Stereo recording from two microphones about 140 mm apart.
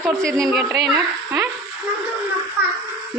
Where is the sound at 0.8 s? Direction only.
25° right (ahead or behind).